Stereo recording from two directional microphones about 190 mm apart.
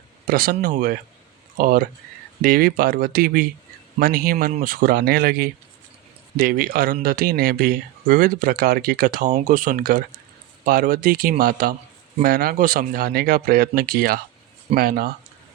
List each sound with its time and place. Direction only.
0.3 s speech: 50° right (ahead or behind)